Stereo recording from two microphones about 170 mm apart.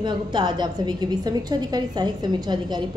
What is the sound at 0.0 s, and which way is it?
A woman's voice, 25° right (ahead or behind).